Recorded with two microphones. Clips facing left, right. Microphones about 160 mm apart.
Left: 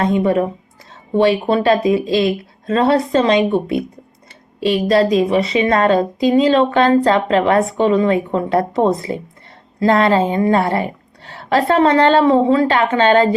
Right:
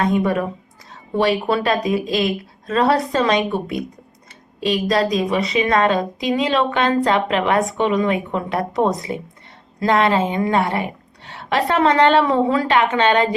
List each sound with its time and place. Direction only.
0.0 s a woman's voice: 25° left (ahead or behind)